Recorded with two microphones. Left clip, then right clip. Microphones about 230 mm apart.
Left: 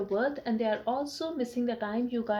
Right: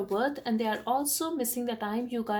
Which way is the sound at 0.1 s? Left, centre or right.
Right.